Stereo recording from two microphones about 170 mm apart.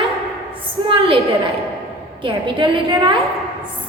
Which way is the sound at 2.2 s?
30° right (ahead or behind).